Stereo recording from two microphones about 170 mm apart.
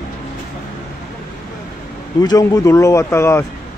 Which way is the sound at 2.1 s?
20° left (ahead or behind).